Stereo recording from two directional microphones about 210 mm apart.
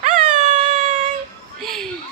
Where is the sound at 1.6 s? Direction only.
Centre (ahead or behind).